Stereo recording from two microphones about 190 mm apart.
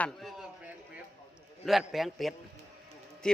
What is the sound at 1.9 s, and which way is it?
A man's voice, centre (ahead or behind).